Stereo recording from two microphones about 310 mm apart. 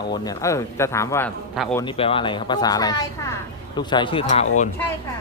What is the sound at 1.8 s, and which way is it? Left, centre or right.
Speech, centre.